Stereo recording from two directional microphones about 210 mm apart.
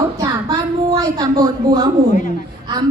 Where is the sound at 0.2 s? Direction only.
15° right (ahead or behind).